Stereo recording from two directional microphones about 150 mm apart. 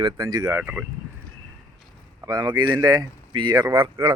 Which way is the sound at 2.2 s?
25° right (ahead or behind).